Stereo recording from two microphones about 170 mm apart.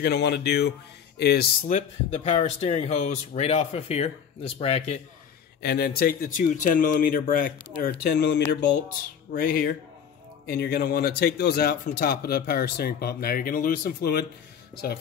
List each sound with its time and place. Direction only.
0.0 s speech: 75° left (ahead or behind)
1.7 s speech: 35° left (ahead or behind)
5.6 s speech: 65° left (ahead or behind)
7.8 s speech: 70° left (ahead or behind)
8.8 s speech: 55° left (ahead or behind)